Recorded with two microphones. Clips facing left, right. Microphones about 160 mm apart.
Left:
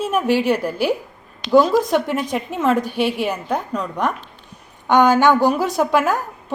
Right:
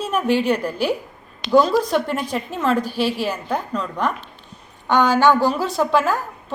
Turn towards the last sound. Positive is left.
turn(degrees=15)  # may be behind; listen again after turning